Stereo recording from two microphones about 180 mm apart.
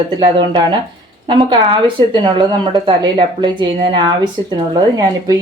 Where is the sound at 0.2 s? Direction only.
25° right (ahead or behind).